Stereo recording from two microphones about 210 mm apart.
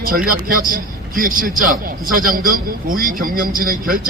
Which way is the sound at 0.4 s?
40° right (ahead or behind).